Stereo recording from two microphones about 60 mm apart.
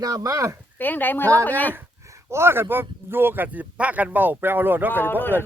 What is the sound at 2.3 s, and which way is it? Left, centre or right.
Speech, right.